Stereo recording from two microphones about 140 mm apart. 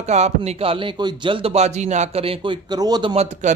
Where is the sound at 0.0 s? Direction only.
50° right (ahead or behind); by 3.2 s 30° right (ahead or behind).